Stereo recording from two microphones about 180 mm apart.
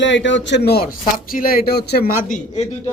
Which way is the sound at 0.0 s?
90° left.